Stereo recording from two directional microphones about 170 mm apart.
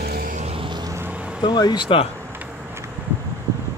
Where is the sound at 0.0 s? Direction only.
60° right (ahead or behind).